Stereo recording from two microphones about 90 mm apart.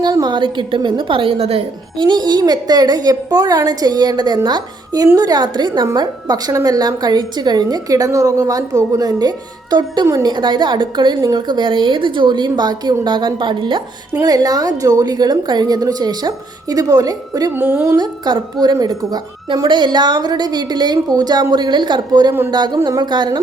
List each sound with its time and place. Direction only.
0.0 s a woman's voice: 50° right (ahead or behind)
14.3 s a woman's voice: 45° right (ahead or behind)
17.5 s speech: 25° right (ahead or behind)
17.8 s a woman's voice: 50° right (ahead or behind)